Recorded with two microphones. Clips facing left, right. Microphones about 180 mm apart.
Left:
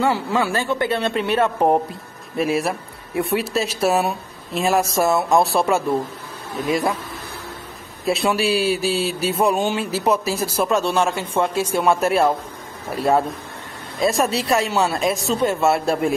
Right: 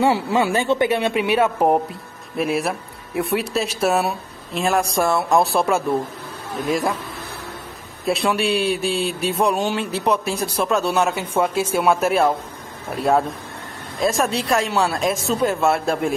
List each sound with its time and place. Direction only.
0.0 s a woman's voice: 20° right (ahead or behind); by 7.0 s centre (ahead or behind)
8.0 s speech: centre (ahead or behind)